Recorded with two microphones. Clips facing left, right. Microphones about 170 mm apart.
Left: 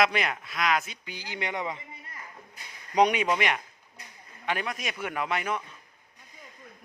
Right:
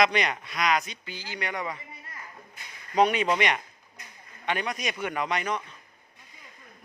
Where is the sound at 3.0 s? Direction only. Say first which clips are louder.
Even; 15° left (ahead or behind).